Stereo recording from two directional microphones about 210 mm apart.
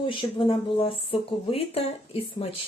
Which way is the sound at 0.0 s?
25° left (ahead or behind).